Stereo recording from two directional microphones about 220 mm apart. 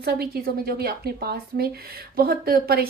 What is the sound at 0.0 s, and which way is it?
A woman's voice, 45° right (ahead or behind).